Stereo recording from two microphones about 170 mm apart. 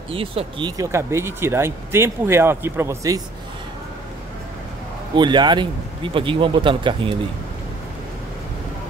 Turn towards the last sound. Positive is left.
turn(degrees=-30)  # may be behind; listen again after turning